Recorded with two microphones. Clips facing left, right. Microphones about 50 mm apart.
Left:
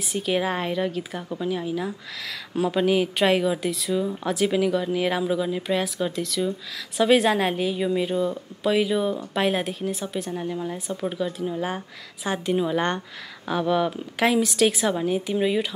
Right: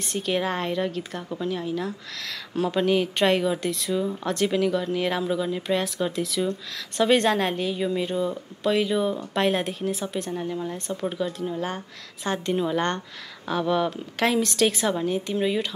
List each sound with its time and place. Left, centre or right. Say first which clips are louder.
0.0 s a woman's voice: left 1 dB; centre